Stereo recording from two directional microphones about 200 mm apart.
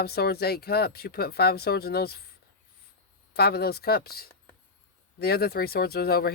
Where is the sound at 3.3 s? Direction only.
50° left (ahead or behind).